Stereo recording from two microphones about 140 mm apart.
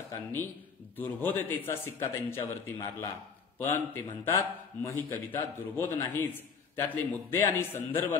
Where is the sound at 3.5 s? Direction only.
15° left (ahead or behind).